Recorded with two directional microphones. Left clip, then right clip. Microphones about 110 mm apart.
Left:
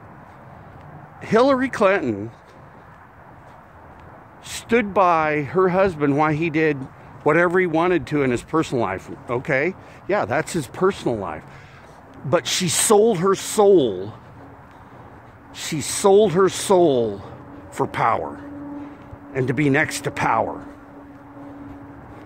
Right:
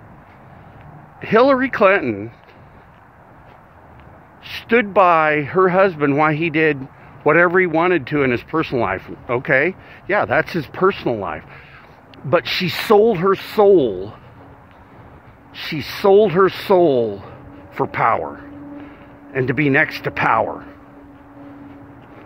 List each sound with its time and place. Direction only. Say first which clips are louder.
1.2 s speech: right 3 dB; 30° left (ahead or behind)
4.5 s speech: right 4 dB; 25° left (ahead or behind)
15.5 s speech: right 2 dB; 30° left (ahead or behind)
19.3 s speech: right 3 dB; 30° left (ahead or behind)